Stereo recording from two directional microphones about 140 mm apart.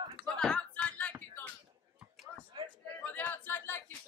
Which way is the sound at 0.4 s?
5° left (ahead or behind).